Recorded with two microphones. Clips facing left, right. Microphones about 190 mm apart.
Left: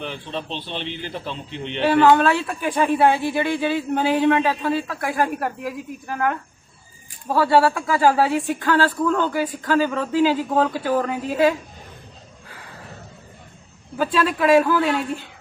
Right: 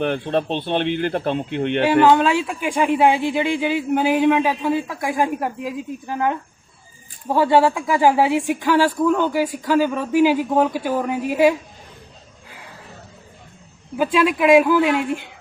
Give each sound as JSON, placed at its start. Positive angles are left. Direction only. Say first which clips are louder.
{"t": 0.0, "sound": "speech", "louder": "right 9 dB", "side_deg": -55}
{"t": 1.8, "sound": "speech", "louder": "even", "side_deg": -15}
{"t": 13.9, "sound": "speech", "louder": "right 3 dB", "side_deg": -15}